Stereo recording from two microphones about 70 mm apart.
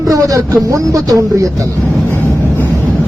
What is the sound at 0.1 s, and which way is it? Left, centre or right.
Speech, right.